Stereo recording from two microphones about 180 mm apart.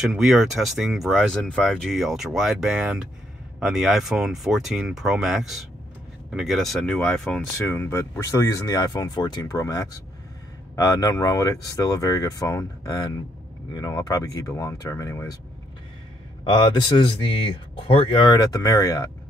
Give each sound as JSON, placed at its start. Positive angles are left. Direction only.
{"t": 0.0, "sound": "speech", "side_deg": 0}
{"t": 16.4, "sound": "speech", "side_deg": 25}